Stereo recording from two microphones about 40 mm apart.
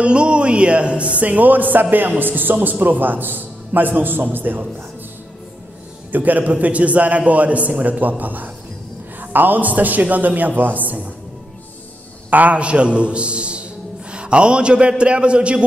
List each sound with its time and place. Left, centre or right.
0.0 s a man's voice: right
6.1 s a man's voice: right
12.3 s a man's voice: right
12.5 s a man's voice: right